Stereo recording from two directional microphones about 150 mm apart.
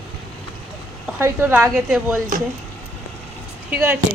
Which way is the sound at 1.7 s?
5° right (ahead or behind).